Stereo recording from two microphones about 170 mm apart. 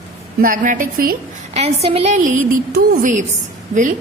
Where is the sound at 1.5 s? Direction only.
35° right (ahead or behind).